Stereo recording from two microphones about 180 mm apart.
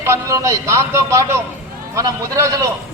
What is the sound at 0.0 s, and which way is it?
A man's voice, 15° right (ahead or behind).